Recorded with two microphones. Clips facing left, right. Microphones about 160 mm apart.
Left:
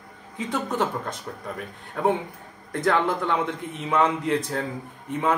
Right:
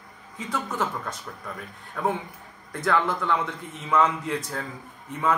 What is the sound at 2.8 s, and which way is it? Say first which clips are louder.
A man's voice: left 2 dB; 30° left (ahead or behind).